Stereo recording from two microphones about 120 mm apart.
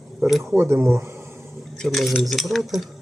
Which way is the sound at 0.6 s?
20° right (ahead or behind).